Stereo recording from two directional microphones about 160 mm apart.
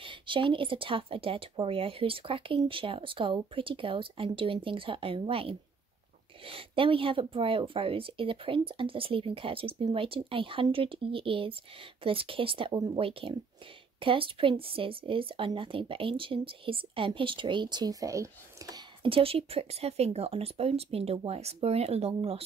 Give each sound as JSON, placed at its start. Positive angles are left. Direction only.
{"t": 0.0, "sound": "speech", "side_deg": -30}
{"t": 19.0, "sound": "speech", "side_deg": -35}